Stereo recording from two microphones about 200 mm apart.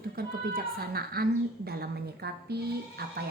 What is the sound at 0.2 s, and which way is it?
A woman's voice, 50° right (ahead or behind).